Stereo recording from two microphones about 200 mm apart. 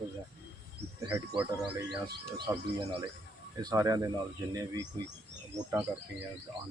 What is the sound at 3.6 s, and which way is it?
Speech, 15° right (ahead or behind).